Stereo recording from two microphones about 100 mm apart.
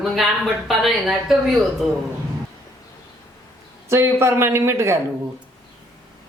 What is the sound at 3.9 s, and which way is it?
A woman's voice, 25° right (ahead or behind).